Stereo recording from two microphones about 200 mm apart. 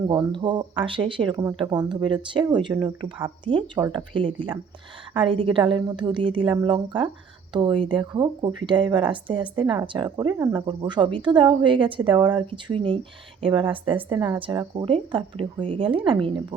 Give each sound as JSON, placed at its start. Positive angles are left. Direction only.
{"t": 0.1, "sound": "speech", "side_deg": -25}